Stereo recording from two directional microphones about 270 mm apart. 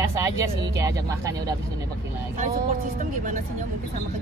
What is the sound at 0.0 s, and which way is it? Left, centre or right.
Speech, centre.